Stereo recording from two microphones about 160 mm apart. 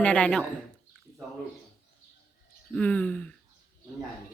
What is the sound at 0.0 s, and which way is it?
Speech, 5° left (ahead or behind).